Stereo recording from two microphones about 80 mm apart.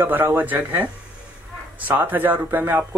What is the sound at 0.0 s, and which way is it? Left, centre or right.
Speech, right.